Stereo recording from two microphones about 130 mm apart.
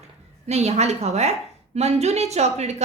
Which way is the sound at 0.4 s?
55° right (ahead or behind).